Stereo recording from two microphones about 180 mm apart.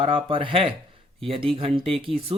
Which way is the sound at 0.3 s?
30° right (ahead or behind).